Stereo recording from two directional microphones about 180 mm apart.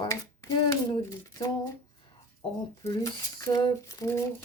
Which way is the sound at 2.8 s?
20° left (ahead or behind).